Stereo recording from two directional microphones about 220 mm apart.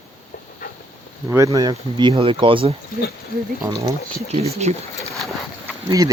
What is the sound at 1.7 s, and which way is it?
Speech, 25° right (ahead or behind).